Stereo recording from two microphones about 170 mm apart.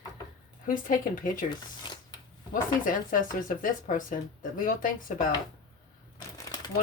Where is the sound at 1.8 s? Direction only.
25° left (ahead or behind).